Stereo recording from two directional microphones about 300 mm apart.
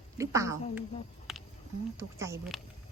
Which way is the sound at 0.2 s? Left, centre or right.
Centre.